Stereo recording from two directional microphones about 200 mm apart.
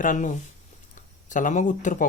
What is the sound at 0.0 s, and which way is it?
Speech, 40° left (ahead or behind).